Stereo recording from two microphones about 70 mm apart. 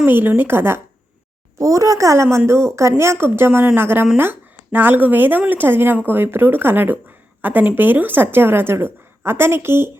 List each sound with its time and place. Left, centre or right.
0.0 s speech: right
1.5 s a woman's voice: right